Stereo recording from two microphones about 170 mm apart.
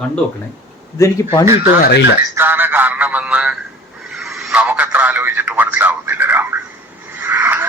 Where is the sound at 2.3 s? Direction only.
10° right (ahead or behind).